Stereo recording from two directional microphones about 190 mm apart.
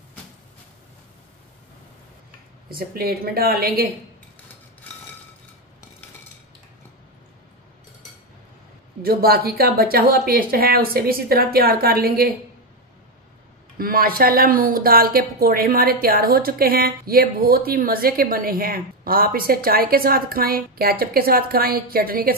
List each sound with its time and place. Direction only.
2.7 s speech: 55° right (ahead or behind)
9.0 s speech: 50° right (ahead or behind)
13.7 s speech: 50° right (ahead or behind)